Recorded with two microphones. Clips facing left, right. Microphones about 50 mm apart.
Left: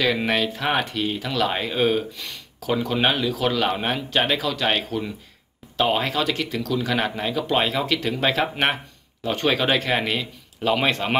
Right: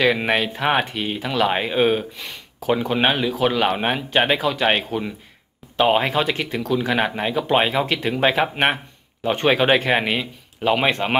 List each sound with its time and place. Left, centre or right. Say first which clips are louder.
0.0 s speech: right 3 dB; centre